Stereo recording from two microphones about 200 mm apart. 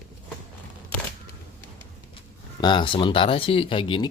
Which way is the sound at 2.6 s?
20° left (ahead or behind).